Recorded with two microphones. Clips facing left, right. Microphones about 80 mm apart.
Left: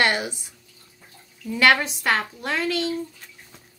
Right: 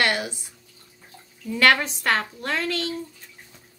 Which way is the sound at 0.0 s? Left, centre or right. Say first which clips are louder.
Left 2 dB; left.